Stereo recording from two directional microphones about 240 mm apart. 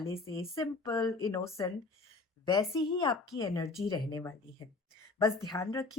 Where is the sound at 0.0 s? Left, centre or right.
Centre.